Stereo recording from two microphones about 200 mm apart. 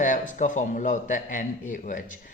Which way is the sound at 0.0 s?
40° left (ahead or behind).